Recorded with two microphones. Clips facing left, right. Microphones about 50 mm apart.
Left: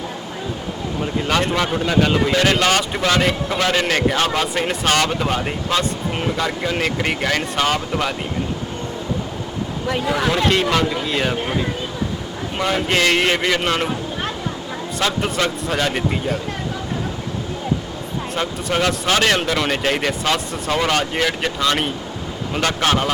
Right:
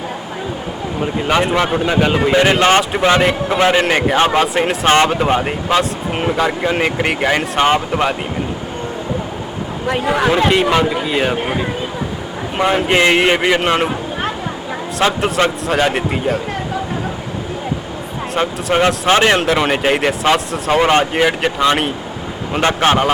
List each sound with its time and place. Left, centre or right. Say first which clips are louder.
1.0 s speech: right 4 dB; centre
4.6 s speech: right 5 dB; centre
4.9 s speech: right 7 dB; right
9.8 s speech: right 5 dB; right
18.3 s speech: right 6 dB; right